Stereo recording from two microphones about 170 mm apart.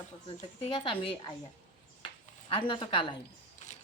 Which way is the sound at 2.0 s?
30° left (ahead or behind).